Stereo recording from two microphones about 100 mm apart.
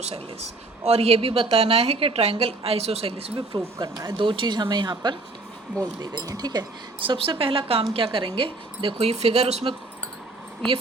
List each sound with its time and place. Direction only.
0.9 s a woman's voice: 90° right; by 6.7 s 40° right (ahead or behind)
7.0 s a woman's voice: 65° right (ahead or behind); by 9.7 s 90° right